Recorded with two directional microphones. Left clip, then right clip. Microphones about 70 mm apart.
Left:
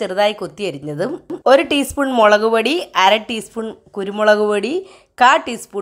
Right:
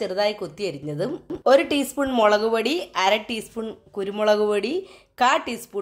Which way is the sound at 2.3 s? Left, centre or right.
Left.